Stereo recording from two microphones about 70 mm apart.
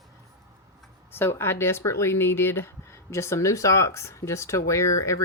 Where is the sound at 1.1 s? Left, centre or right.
Left.